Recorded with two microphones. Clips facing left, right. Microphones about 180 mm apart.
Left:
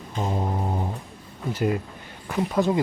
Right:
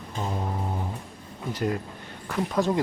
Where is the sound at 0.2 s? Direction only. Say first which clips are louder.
Left 4 dB; 25° left (ahead or behind).